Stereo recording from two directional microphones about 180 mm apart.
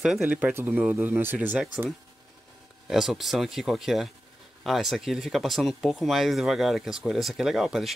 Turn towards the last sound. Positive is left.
turn(degrees=0)  # may be behind; listen again after turning